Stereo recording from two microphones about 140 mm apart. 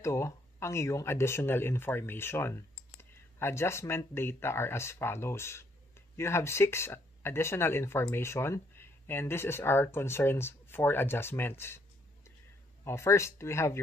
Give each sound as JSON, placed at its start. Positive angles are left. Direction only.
{"t": 0.0, "sound": "speech", "side_deg": 20}
{"t": 12.8, "sound": "speech", "side_deg": 20}